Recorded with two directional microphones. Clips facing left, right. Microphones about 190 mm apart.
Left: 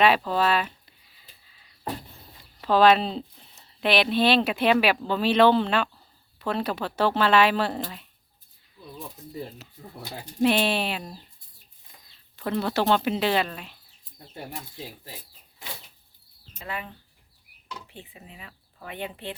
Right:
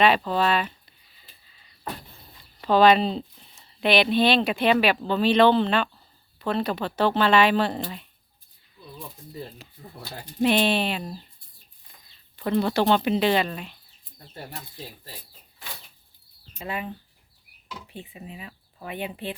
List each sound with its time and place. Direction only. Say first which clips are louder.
0.0 s speech: even; 5° left (ahead or behind)
2.6 s speech: right 1 dB; 5° left (ahead or behind)
12.4 s speech: right 3 dB; centre (ahead or behind)
16.6 s speech: right 4 dB; 20° right (ahead or behind)